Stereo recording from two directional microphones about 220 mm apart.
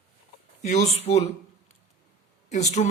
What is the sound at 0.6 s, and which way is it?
Speech, 30° left (ahead or behind).